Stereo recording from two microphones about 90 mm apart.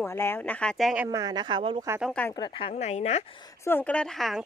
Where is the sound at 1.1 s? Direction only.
45° right (ahead or behind).